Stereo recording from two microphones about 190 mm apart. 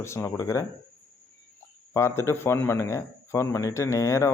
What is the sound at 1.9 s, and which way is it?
A man's voice, 15° left (ahead or behind).